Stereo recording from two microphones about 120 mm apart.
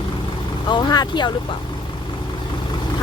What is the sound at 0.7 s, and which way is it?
Vehicle, 40° left (ahead or behind).